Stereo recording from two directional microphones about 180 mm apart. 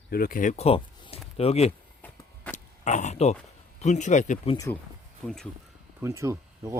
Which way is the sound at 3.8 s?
40° left (ahead or behind).